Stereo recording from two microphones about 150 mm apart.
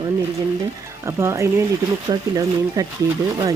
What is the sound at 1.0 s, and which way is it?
Speech, 20° right (ahead or behind).